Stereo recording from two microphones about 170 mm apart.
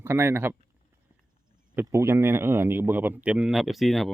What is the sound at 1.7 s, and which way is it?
Speech, 15° right (ahead or behind).